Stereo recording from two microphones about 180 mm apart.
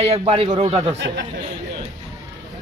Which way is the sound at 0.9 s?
75° right (ahead or behind).